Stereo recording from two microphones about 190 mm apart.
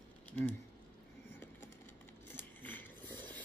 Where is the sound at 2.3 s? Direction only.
10° left (ahead or behind).